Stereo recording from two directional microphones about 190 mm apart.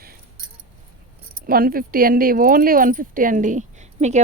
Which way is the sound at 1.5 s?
50° right (ahead or behind).